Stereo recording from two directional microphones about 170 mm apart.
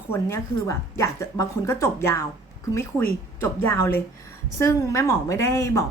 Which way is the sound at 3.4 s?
15° left (ahead or behind).